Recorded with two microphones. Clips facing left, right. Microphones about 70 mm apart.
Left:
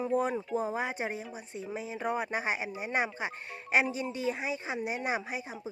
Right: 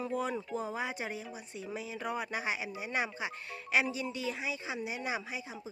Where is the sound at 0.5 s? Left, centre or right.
Left.